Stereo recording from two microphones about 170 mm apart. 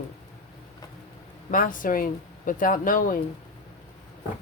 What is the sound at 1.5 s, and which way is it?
Speech, 55° left (ahead or behind).